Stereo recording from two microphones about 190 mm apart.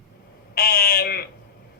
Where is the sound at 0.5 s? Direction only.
55° left (ahead or behind).